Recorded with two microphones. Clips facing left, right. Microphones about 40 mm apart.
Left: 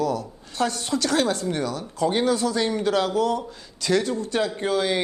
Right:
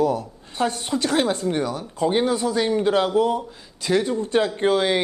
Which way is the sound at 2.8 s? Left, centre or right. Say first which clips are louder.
Right 3 dB; right.